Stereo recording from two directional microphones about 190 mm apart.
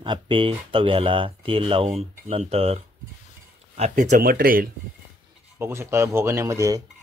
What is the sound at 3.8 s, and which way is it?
Speech, 40° right (ahead or behind).